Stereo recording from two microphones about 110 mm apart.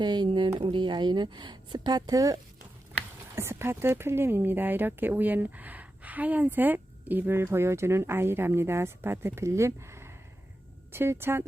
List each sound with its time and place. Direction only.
0.0 s speech: 45° right (ahead or behind)
3.3 s speech: 25° right (ahead or behind)